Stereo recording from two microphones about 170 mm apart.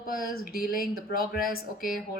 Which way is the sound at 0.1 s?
60° left (ahead or behind).